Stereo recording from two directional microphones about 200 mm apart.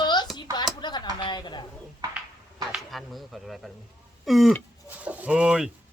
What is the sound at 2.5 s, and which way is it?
Speech, centre (ahead or behind).